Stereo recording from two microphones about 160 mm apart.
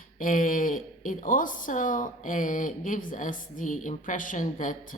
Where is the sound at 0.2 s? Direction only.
60° left (ahead or behind).